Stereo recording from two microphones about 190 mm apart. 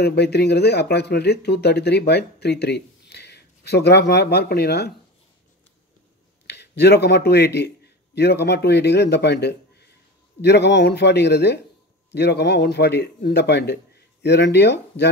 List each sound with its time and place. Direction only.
0.0 s speech: 60° left (ahead or behind)
6.4 s a man's voice: 60° left (ahead or behind)